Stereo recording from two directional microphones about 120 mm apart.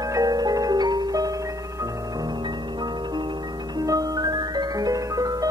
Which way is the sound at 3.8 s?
30° right (ahead or behind).